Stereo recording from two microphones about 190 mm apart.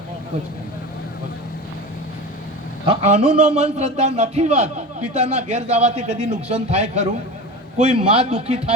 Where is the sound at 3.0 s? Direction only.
35° right (ahead or behind).